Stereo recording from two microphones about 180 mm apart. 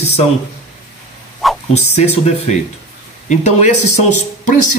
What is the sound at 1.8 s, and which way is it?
Speech, 35° left (ahead or behind).